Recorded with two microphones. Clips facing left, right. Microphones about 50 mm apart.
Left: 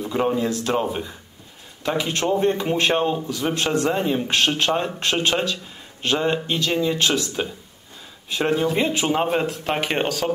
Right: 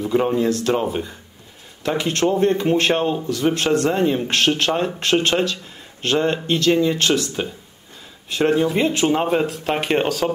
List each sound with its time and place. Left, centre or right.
0.0 s speech: centre